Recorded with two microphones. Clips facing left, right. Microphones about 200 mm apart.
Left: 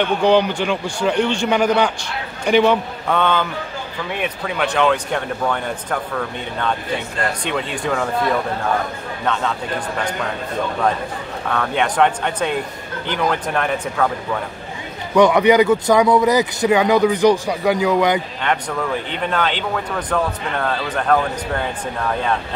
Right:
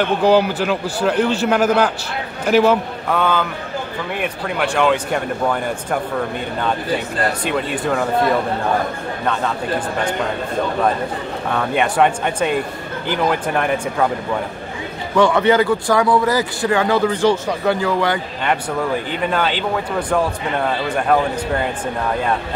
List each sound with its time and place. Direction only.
0.2 s a man's voice: 5° right (ahead or behind)
4.6 s speech: 5° right (ahead or behind)
7.4 s a man's voice: 5° right (ahead or behind)
11.5 s speech: 10° right (ahead or behind)
15.1 s speech: 15° left (ahead or behind)
19.2 s speech: 5° right (ahead or behind)